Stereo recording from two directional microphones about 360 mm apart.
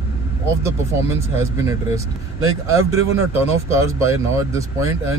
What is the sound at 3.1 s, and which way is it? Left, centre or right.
Speech, centre.